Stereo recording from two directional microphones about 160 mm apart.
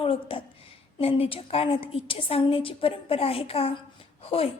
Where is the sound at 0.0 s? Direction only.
35° left (ahead or behind).